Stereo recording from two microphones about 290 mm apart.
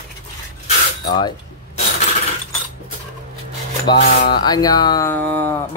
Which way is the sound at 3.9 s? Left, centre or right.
Centre.